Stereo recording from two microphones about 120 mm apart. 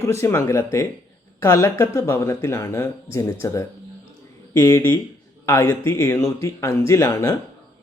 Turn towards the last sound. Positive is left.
turn(degrees=25)  # may be behind; listen again after turning